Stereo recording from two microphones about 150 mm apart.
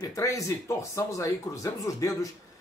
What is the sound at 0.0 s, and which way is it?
Speech, 20° left (ahead or behind).